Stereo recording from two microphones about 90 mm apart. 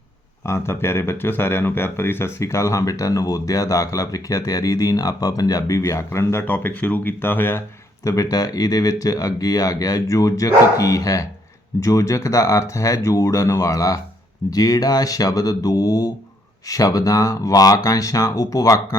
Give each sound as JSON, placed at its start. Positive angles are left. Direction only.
{"t": 0.4, "sound": "speech", "side_deg": 30}
{"t": 8.0, "sound": "speech", "side_deg": 40}